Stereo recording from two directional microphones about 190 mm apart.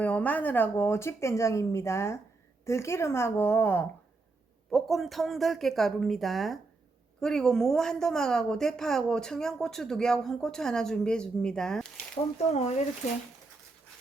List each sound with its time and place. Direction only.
0.0 s speech: 10° left (ahead or behind)
4.7 s a woman's voice: centre (ahead or behind)
12.5 s speech: 35° left (ahead or behind)